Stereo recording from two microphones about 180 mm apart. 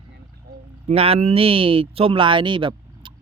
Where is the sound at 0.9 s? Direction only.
35° right (ahead or behind).